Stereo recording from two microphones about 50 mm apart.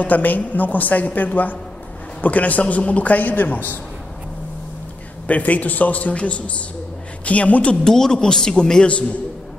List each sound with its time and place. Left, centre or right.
0.0 s a woman's voice: left
5.2 s a woman's voice: left
7.8 s a man's voice: centre